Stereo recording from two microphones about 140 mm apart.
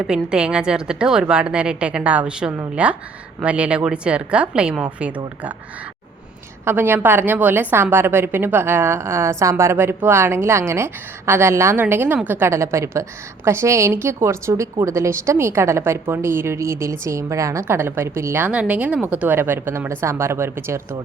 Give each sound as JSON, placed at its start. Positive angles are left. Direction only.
{"t": 0.0, "sound": "a woman's voice", "side_deg": -5}
{"t": 6.7, "sound": "a woman's voice", "side_deg": -15}